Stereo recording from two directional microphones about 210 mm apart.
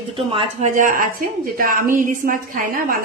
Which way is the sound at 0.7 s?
40° right (ahead or behind).